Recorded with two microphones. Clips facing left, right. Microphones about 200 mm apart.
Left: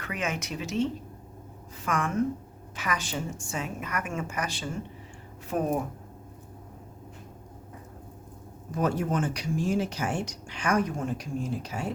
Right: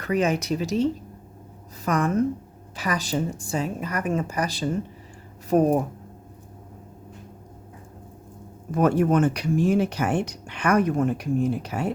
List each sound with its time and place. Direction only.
0.0 s a woman's voice: 35° right (ahead or behind)
8.7 s speech: 60° right (ahead or behind)